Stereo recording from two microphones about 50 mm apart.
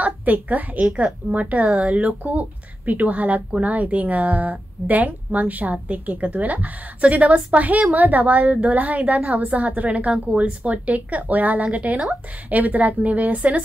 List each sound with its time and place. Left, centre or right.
0.0 s a woman's voice: right
2.0 s speech: right